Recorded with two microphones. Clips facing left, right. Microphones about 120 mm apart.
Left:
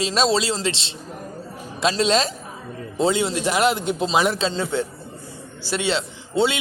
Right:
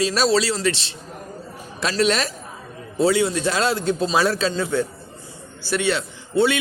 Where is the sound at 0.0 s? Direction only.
25° left (ahead or behind).